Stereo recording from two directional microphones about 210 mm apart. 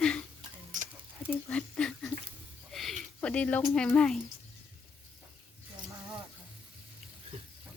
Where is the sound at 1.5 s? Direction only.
5° left (ahead or behind).